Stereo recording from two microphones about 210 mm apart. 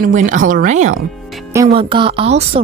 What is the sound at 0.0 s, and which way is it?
Speech, 35° right (ahead or behind).